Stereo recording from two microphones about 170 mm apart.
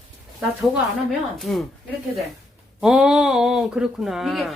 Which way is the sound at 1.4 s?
Centre (ahead or behind).